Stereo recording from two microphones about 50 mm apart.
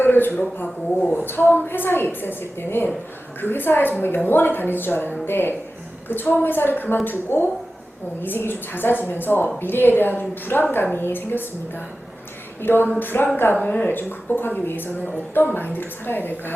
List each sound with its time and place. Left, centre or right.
0.0 s a woman's voice: left
13.6 s speech: left
13.9 s a woman's voice: left